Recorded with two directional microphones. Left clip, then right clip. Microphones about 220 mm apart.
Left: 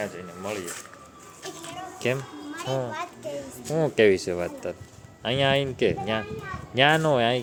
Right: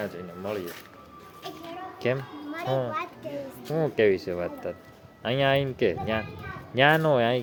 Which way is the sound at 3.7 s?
15° left (ahead or behind).